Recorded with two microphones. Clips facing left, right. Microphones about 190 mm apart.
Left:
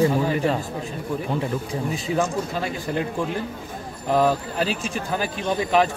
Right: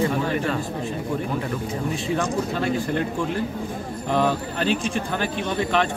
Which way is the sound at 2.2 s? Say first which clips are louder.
Left 3 dB; 5° left (ahead or behind).